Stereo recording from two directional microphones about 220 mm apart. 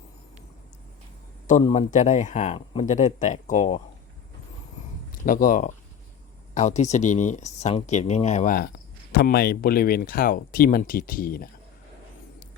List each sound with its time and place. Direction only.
1.6 s speech: 30° left (ahead or behind)
5.2 s speech: 40° left (ahead or behind)